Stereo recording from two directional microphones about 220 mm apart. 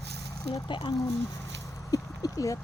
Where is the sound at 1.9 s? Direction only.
15° left (ahead or behind).